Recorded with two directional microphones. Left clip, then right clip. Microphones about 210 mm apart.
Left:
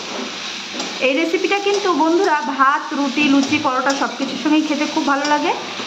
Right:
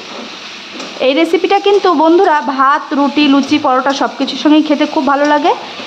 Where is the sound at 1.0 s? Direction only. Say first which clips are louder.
Right 7 dB; 65° right (ahead or behind).